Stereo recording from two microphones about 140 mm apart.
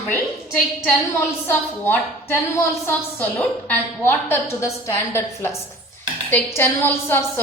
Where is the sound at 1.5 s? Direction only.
15° left (ahead or behind).